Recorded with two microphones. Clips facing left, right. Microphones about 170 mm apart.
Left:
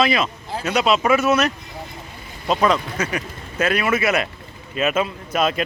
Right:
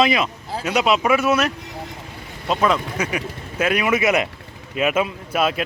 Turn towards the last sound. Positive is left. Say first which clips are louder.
# even
turn(degrees=-5)  # may be behind; listen again after turning